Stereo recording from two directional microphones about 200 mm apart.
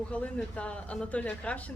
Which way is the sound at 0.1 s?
5° left (ahead or behind).